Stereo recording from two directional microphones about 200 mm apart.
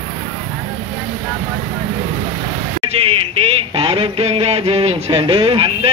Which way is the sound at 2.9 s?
30° right (ahead or behind).